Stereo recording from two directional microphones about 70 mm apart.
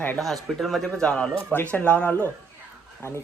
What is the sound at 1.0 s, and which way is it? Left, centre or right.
Speech, centre.